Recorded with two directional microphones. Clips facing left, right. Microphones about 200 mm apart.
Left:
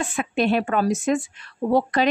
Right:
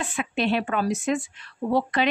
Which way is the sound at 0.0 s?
45° left (ahead or behind).